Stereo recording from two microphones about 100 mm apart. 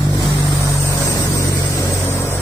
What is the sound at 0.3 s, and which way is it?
Vehicle, 30° left (ahead or behind).